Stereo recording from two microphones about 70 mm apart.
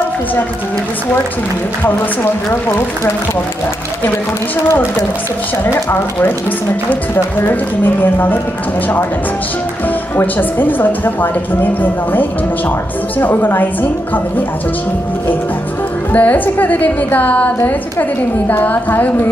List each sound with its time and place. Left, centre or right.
5.9 s speech: left
10.1 s speech: left
16.1 s speech: left
18.5 s speech: left